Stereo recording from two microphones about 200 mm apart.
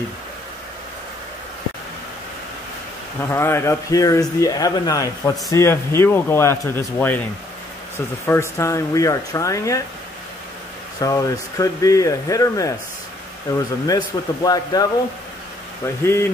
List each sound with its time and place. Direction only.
3.2 s speech: 10° left (ahead or behind)
8.3 s speech: 15° left (ahead or behind)
11.0 s speech: 15° left (ahead or behind)
13.8 s speech: 20° left (ahead or behind)
16.0 s speech: 10° left (ahead or behind)